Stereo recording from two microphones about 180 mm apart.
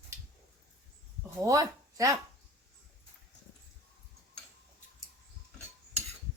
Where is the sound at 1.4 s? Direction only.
20° right (ahead or behind).